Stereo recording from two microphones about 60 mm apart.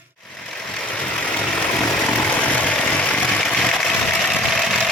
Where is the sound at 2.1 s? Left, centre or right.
Left.